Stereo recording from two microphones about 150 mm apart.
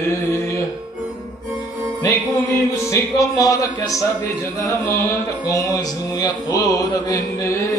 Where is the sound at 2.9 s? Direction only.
20° left (ahead or behind).